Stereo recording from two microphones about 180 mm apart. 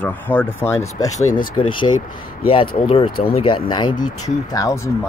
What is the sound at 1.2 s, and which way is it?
Speech, 50° left (ahead or behind).